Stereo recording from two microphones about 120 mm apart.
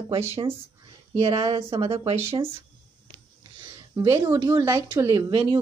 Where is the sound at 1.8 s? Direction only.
55° right (ahead or behind).